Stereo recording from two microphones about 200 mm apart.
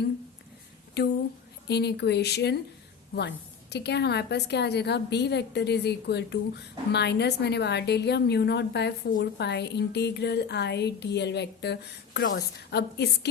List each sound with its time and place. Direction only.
1.0 s a woman's voice: 55° left (ahead or behind)